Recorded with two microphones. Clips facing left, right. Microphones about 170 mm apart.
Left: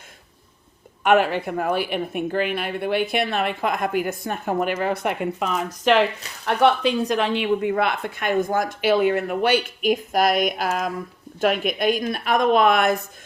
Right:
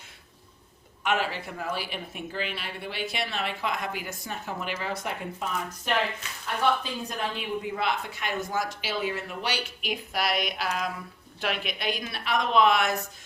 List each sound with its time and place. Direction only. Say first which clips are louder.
1.0 s speech: left 10 dB; 55° left (ahead or behind)